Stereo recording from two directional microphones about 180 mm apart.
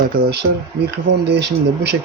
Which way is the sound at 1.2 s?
65° right (ahead or behind).